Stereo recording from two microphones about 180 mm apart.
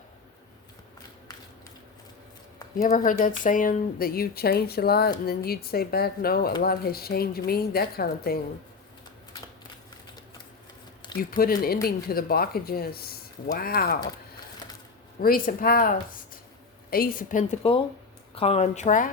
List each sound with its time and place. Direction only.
2.7 s speech: 45° left (ahead or behind)
11.2 s speech: 55° left (ahead or behind)
15.2 s speech: 55° left (ahead or behind)
16.9 s speech: 55° left (ahead or behind)
17.6 s a woman's voice: 30° left (ahead or behind)